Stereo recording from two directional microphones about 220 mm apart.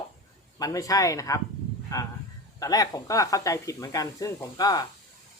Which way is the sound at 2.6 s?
15° left (ahead or behind).